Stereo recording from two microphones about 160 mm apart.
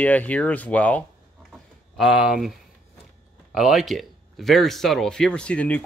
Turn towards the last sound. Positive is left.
turn(degrees=10)  # may be behind; listen again after turning